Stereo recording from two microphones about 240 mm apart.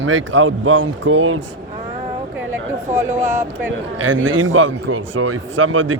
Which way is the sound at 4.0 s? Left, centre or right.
Right.